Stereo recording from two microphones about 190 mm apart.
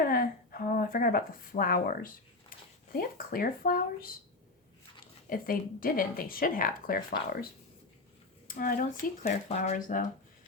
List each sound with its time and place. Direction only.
0.0 s a woman's voice: 50° left (ahead or behind)
5.3 s speech: 50° left (ahead or behind)